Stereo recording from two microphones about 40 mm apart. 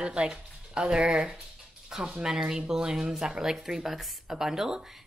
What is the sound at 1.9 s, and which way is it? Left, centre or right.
Speech, centre.